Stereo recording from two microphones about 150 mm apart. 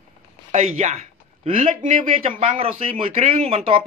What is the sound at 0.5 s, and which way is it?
Speech, 50° right (ahead or behind).